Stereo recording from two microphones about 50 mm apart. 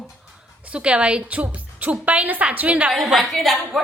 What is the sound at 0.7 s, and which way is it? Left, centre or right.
A woman's voice, right.